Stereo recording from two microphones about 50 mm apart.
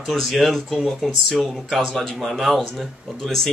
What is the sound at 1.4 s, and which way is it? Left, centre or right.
Speech, centre.